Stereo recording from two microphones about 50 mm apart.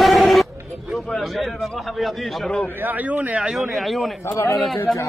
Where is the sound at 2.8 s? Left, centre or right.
Right.